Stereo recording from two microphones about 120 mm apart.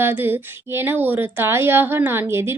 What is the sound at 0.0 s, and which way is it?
Speech, 15° right (ahead or behind).